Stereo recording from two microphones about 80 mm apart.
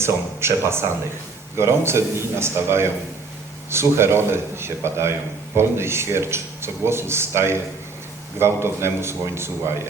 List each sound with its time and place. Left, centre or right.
0.0 s speech: right